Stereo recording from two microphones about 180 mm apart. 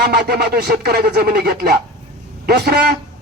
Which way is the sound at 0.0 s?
60° right (ahead or behind).